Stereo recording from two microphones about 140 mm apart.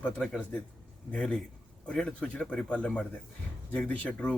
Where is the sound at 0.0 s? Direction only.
5° left (ahead or behind).